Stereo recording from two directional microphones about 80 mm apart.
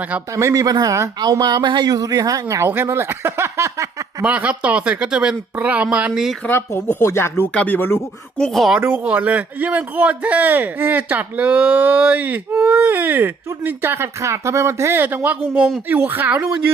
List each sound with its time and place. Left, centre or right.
0.3 s speech: right
1.2 s speech: right
2.6 s speech: right
4.2 s speech: centre
6.5 s speech: left
7.4 s speech: centre
8.4 s speech: centre
8.8 s speech: right
15.0 s speech: right